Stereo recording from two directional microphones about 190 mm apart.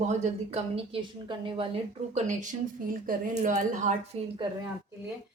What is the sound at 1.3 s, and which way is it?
A woman's voice, 25° right (ahead or behind).